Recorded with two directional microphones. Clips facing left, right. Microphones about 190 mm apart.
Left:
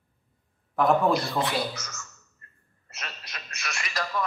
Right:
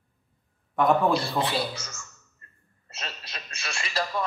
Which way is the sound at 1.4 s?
30° right (ahead or behind).